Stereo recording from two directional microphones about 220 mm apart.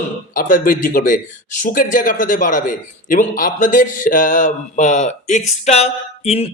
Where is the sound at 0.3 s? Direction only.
35° left (ahead or behind).